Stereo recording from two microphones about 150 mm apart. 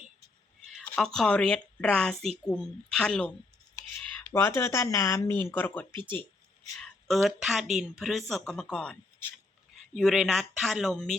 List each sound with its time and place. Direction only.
0.9 s speech: 5° left (ahead or behind)
4.3 s speech: 15° left (ahead or behind)
5.9 s speech: 35° right (ahead or behind)
6.7 s speech: centre (ahead or behind)